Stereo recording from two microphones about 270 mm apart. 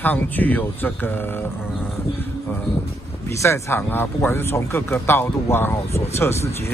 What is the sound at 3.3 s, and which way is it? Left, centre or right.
Speech, centre.